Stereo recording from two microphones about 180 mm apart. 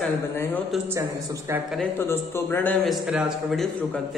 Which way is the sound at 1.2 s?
15° right (ahead or behind).